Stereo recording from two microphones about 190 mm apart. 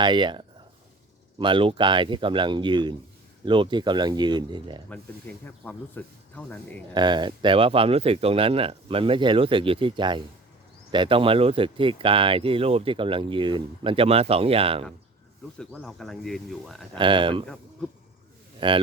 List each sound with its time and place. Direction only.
0.0 s speech: 25° right (ahead or behind)
4.9 s speech: 10° left (ahead or behind)
6.9 s speech: 25° right (ahead or behind)
15.5 s speech: 5° left (ahead or behind)
17.0 s speech: 25° right (ahead or behind)
18.6 s speech: 25° right (ahead or behind)